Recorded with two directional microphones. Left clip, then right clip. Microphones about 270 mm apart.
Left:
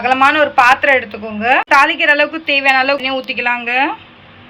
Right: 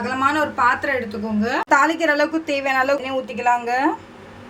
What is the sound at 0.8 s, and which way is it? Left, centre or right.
A woman's voice, centre.